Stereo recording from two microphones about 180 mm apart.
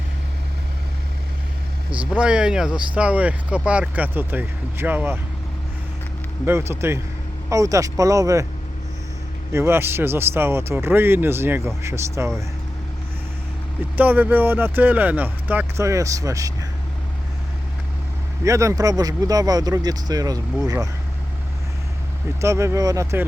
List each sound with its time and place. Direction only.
2.0 s speech: 5° right (ahead or behind)
6.4 s speech: 15° right (ahead or behind)
9.5 s speech: 15° right (ahead or behind)
13.9 s speech: 10° right (ahead or behind)
18.4 s speech: 15° right (ahead or behind)
22.4 s speech: 15° right (ahead or behind)